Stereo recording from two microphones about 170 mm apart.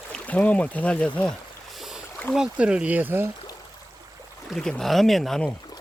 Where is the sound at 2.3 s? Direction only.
5° right (ahead or behind).